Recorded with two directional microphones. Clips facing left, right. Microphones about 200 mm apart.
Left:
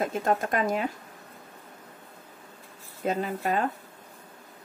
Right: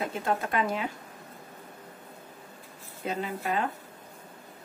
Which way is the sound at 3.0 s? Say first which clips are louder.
Left 4 dB; 45° left (ahead or behind).